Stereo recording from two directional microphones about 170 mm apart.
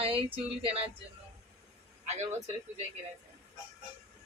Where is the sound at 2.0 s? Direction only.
40° right (ahead or behind).